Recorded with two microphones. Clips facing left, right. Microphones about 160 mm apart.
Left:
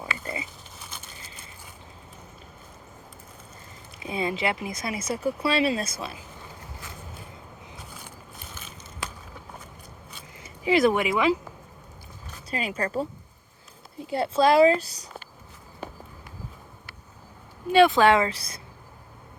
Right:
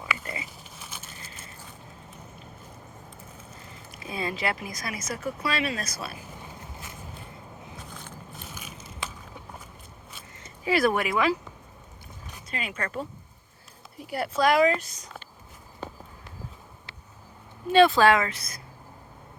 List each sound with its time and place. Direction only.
0.2 s pig: 30° left (ahead or behind)
0.8 s a sound: 5° right (ahead or behind)
4.0 s speech: 20° left (ahead or behind)
8.5 s crushing: 10° right (ahead or behind)
10.4 s speech: 20° left (ahead or behind)
12.5 s speech: 35° left (ahead or behind)
17.7 s speech: 15° left (ahead or behind); by 18.6 s 30° left (ahead or behind)